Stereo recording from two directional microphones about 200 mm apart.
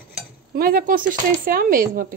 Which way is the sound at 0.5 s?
45° right (ahead or behind).